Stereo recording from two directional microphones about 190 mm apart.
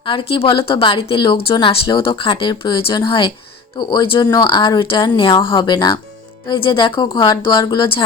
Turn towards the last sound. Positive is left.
turn(degrees=25)  # may be behind; listen again after turning